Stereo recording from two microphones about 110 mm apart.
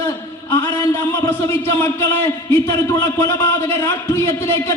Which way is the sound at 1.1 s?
25° left (ahead or behind).